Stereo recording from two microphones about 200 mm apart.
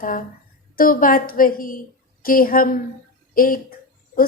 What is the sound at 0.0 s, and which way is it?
A woman's voice, 45° left (ahead or behind).